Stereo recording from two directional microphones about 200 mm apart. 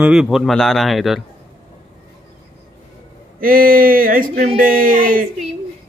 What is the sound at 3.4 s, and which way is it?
Speech, 45° right (ahead or behind).